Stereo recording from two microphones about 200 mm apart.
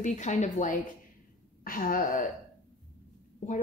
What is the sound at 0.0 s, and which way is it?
Speech, 40° left (ahead or behind).